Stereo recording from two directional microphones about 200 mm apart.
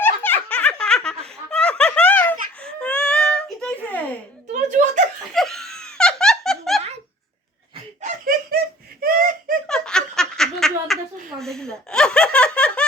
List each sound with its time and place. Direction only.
0.0 s laughter: 10° left (ahead or behind)
4.7 s laughter: 40° right (ahead or behind)
5.3 s laughter: centre (ahead or behind)
8.0 s laughter: 45° right (ahead or behind)
9.0 s a sound: 45° right (ahead or behind)
9.6 s a sound: 5° left (ahead or behind)